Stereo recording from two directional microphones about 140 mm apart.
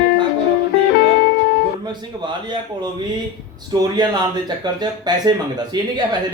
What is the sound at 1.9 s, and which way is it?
Speech, 30° right (ahead or behind).